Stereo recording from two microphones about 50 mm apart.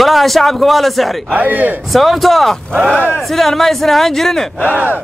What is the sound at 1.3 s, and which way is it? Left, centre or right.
Speech, right.